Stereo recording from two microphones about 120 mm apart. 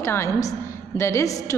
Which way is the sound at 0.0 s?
25° left (ahead or behind).